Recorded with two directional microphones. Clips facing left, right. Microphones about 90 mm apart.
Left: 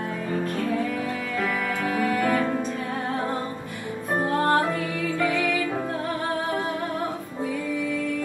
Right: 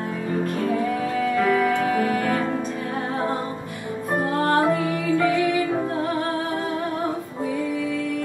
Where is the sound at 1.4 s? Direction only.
20° right (ahead or behind).